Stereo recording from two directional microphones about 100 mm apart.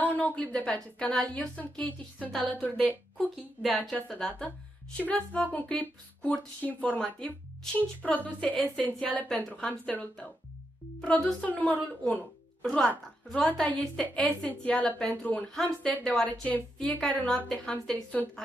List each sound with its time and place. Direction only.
0.0 s a woman's voice: 15° left (ahead or behind)
3.6 s a woman's voice: centre (ahead or behind)
11.0 s speech: 5° left (ahead or behind)
11.4 s a woman's voice: 15° left (ahead or behind)